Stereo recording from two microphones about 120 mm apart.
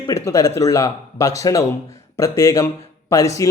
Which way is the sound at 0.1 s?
25° left (ahead or behind).